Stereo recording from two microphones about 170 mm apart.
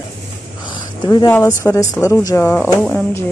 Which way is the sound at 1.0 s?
25° left (ahead or behind).